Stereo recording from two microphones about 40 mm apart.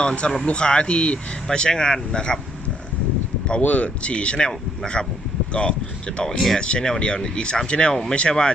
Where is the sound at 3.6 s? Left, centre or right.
Left.